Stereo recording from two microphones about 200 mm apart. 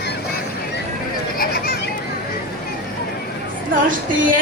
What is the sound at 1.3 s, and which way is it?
Children playing, 50° left (ahead or behind).